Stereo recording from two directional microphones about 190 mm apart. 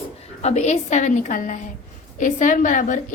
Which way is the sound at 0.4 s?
35° left (ahead or behind).